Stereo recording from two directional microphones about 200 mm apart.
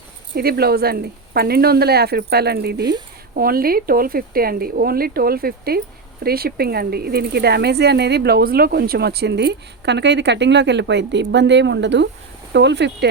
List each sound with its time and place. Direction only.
0.3 s speech: 50° right (ahead or behind)